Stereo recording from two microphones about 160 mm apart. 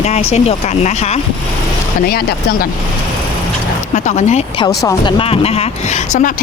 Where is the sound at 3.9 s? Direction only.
50° left (ahead or behind).